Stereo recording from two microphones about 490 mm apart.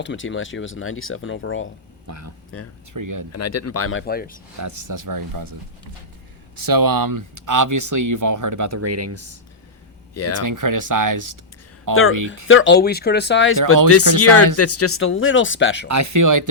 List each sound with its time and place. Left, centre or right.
0.0 s speech: left
2.0 s speech: right
2.5 s speech: left
2.9 s speech: right
3.3 s speech: left
4.6 s speech: right
6.6 s speech: right
10.2 s speech: left
10.4 s speech: right
12.5 s speech: left
15.9 s speech: right